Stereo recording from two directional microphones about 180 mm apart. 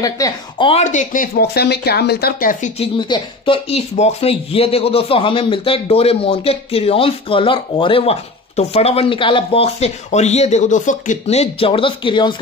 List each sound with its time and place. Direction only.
0.0 s speech: 20° left (ahead or behind)
0.7 s speech: 40° left (ahead or behind); by 2.5 s 60° left (ahead or behind)
3.0 s speech: 25° left (ahead or behind)